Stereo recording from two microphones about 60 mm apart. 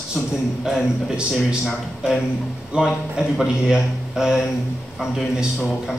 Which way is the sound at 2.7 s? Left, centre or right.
Centre.